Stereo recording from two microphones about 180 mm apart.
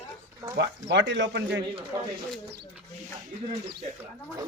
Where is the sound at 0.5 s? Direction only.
75° right (ahead or behind).